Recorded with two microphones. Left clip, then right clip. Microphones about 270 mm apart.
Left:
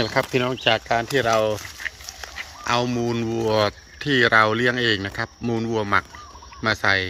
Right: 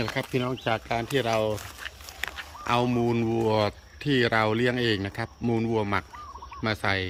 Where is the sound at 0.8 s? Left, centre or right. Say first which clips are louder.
Left 6 dB; centre.